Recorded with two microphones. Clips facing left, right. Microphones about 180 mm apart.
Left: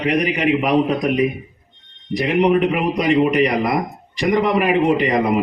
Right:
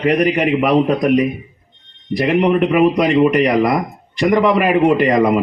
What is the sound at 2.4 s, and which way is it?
A man's voice, 60° right (ahead or behind).